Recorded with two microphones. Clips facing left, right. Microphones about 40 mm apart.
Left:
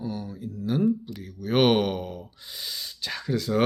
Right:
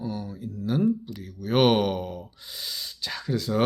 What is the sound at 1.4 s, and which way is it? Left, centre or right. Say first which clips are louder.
Speech: even; centre.